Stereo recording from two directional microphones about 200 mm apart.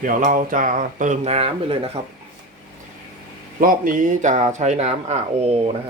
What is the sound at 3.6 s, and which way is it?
Speech, 45° right (ahead or behind).